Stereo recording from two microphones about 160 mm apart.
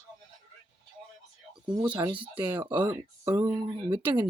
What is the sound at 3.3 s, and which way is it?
Speech, 15° right (ahead or behind).